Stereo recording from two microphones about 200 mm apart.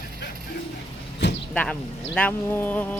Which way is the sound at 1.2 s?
60° left (ahead or behind).